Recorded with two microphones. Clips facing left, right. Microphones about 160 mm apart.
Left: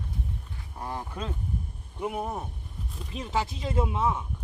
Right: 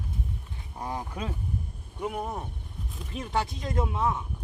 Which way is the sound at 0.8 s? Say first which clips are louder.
Right 1 dB; 15° right (ahead or behind).